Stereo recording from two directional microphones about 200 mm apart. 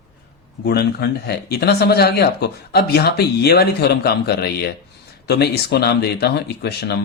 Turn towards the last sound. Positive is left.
turn(degrees=50)  # may be behind; listen again after turning